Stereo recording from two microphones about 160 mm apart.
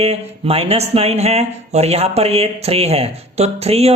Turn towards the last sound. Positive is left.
turn(degrees=-40)  # may be behind; listen again after turning